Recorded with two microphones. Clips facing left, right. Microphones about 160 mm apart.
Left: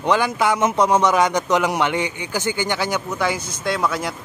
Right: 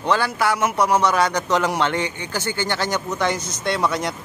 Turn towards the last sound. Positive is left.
turn(degrees=5)  # may be behind; listen again after turning